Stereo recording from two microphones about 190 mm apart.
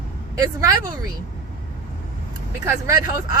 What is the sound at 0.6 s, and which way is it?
Speech, 20° right (ahead or behind).